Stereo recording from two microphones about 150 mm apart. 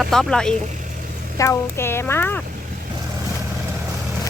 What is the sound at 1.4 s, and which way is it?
Speech, 15° left (ahead or behind).